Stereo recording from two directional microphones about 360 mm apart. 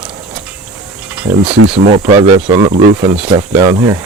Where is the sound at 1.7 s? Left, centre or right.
Centre.